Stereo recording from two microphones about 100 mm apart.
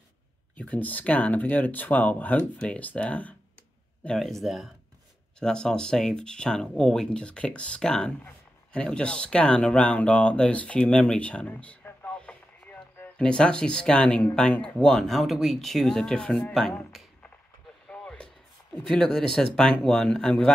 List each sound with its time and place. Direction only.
0.6 s speech: 15° left (ahead or behind)
16.9 s a sound: centre (ahead or behind)
17.8 s vehicle: 10° left (ahead or behind)
18.8 s speech: 5° left (ahead or behind)